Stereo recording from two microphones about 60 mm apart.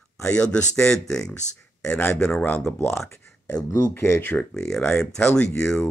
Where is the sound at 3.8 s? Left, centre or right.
Left.